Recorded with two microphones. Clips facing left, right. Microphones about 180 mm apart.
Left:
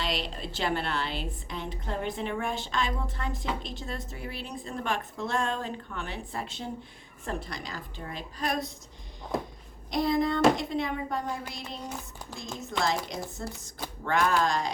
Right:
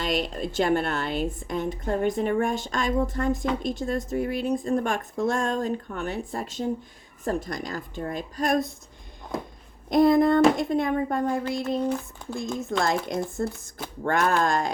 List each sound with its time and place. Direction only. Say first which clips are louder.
0.0 s a woman's voice: right 6 dB; 50° right (ahead or behind)
9.9 s a woman's voice: right 8 dB; 50° right (ahead or behind)